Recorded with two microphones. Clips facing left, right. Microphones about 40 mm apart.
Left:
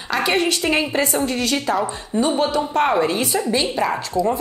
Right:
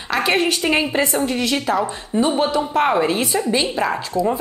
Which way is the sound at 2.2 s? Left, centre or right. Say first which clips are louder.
Right 1 dB; centre.